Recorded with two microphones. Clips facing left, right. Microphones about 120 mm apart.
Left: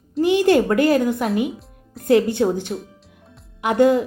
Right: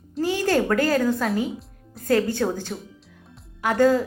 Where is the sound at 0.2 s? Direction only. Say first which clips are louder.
Left 6 dB; 20° left (ahead or behind).